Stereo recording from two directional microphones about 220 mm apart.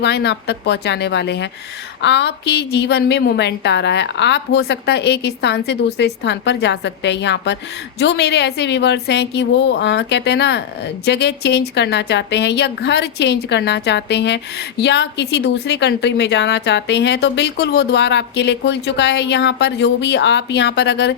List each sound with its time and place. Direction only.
0.0 s a woman's voice: 50° left (ahead or behind)